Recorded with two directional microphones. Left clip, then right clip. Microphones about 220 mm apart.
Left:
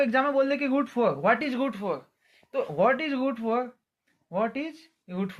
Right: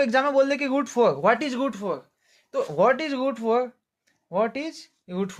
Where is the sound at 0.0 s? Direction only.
55° right (ahead or behind).